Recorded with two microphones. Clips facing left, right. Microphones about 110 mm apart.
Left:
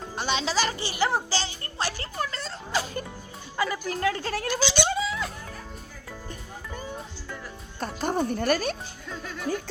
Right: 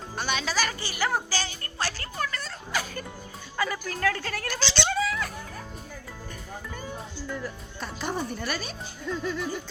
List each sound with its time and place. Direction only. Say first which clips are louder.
0.2 s speech: left 2 dB; 25° left (ahead or behind)
4.5 s a sound: left 2 dB; 15° left (ahead or behind)
7.8 s music: left 5 dB; 45° left (ahead or behind)